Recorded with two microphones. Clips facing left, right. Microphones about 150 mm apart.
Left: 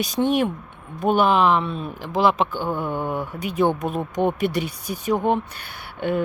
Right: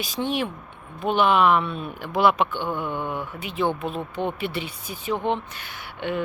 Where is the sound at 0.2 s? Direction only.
50° left (ahead or behind).